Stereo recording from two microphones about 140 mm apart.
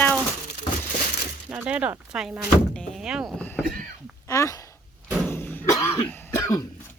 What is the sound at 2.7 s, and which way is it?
Door, 5° left (ahead or behind).